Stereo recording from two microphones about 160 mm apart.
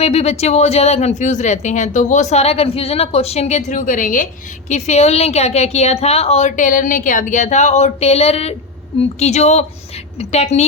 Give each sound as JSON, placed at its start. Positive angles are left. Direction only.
{"t": 0.0, "sound": "speech", "side_deg": 40}
{"t": 4.7, "sound": "speech", "side_deg": 45}